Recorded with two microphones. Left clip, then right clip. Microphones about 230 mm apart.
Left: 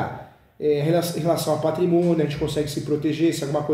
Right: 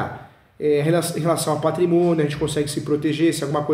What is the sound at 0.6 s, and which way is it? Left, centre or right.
Speech, centre.